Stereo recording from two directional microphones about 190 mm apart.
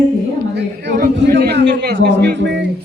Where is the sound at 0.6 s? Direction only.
60° right (ahead or behind).